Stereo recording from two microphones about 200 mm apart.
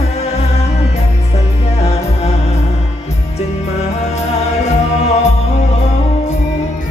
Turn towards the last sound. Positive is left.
turn(degrees=35)  # may be behind; listen again after turning